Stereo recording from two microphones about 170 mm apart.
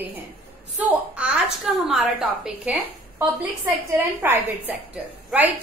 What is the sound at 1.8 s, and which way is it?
A woman's voice, 5° right (ahead or behind).